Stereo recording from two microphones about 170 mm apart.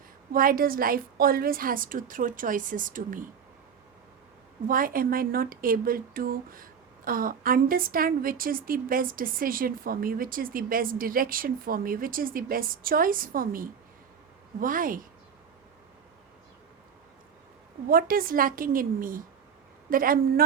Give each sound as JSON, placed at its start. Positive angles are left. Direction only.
{"t": 0.3, "sound": "a woman's voice", "side_deg": -55}
{"t": 4.7, "sound": "a woman's voice", "side_deg": -55}
{"t": 17.8, "sound": "speech", "side_deg": -60}